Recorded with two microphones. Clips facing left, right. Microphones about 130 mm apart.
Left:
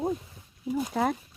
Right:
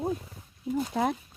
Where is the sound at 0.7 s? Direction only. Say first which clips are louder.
Even; 5° left (ahead or behind).